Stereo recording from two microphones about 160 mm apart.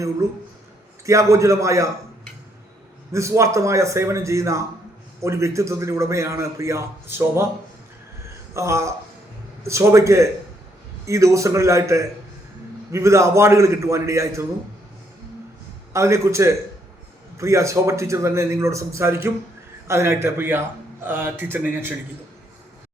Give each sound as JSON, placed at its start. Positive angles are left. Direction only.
{"t": 1.0, "sound": "a man's voice", "side_deg": -20}
{"t": 3.1, "sound": "a man's voice", "side_deg": -20}
{"t": 8.5, "sound": "a man's voice", "side_deg": -20}
{"t": 15.9, "sound": "a man's voice", "side_deg": -20}